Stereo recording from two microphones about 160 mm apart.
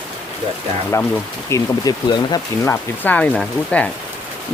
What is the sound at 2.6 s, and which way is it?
Speech, 10° left (ahead or behind).